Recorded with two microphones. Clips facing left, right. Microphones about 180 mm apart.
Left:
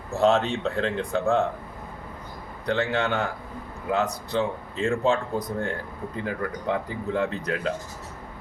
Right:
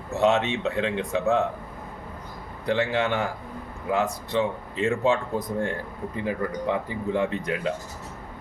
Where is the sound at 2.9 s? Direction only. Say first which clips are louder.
Right 1 dB; 5° right (ahead or behind).